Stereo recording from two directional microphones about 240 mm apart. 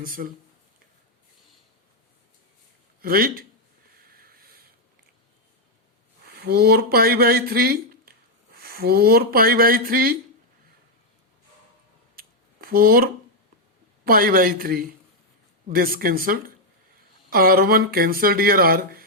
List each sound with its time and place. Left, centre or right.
0.0 s speech: right
3.0 s speech: right
4.1 s sniff: right
6.2 s speech: right
12.1 s a sound: right
14.0 s speech: right